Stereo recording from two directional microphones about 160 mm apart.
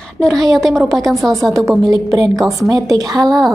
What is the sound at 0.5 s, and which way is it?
Speech, centre (ahead or behind).